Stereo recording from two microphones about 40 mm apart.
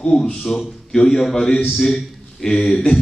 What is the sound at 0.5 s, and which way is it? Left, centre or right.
A man's voice, centre.